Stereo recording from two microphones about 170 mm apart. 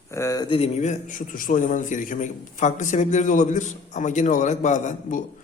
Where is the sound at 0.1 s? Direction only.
20° left (ahead or behind).